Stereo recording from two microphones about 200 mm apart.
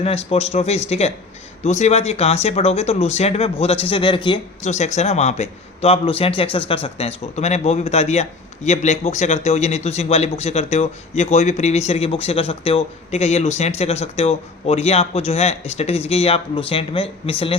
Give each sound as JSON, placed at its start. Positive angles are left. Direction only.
{"t": 0.0, "sound": "speech", "side_deg": 30}